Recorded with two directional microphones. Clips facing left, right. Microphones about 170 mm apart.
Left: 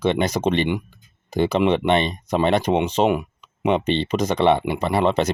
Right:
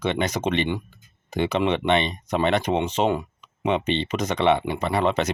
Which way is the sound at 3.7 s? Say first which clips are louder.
Left 3 dB; 35° left (ahead or behind).